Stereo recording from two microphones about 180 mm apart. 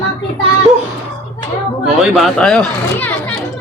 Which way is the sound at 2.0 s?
Centre (ahead or behind).